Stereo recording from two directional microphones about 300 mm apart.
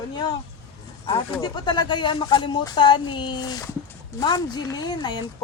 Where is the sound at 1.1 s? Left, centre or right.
Centre.